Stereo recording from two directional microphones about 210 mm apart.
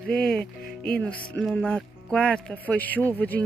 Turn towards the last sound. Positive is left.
turn(degrees=10)  # may be behind; listen again after turning